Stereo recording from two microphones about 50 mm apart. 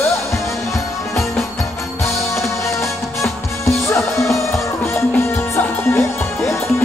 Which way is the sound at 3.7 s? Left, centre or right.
Left.